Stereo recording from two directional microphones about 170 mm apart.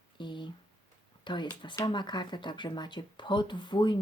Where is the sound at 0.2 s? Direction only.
30° left (ahead or behind).